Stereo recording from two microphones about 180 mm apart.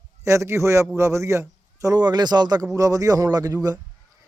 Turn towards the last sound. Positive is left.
turn(degrees=-20)  # may be behind; listen again after turning